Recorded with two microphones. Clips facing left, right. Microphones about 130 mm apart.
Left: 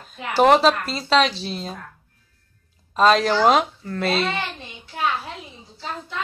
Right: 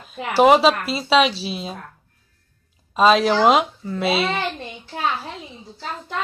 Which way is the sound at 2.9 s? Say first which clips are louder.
Right 1 dB; 5° right (ahead or behind).